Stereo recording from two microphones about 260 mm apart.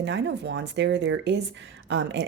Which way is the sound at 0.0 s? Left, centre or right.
Right.